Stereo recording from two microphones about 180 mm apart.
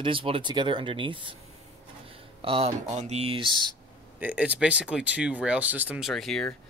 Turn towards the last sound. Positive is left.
turn(degrees=0)  # may be behind; listen again after turning